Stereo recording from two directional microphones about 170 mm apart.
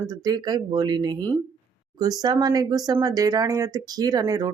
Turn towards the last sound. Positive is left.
turn(degrees=-20)  # may be behind; listen again after turning